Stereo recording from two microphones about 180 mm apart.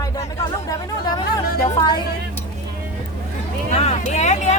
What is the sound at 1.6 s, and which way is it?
Music, 25° left (ahead or behind).